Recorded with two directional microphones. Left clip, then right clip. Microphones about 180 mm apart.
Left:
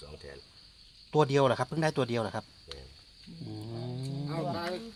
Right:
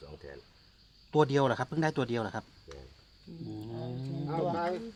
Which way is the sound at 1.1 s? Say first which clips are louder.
Left 1 dB; 30° left (ahead or behind).